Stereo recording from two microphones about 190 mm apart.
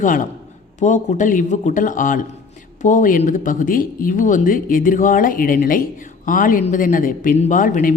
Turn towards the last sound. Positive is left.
turn(degrees=45)  # may be behind; listen again after turning